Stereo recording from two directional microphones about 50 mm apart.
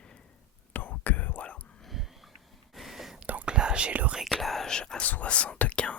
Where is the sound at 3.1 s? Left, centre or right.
Right.